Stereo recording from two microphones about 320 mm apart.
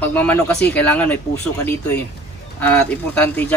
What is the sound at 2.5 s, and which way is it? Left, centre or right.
Speech, centre.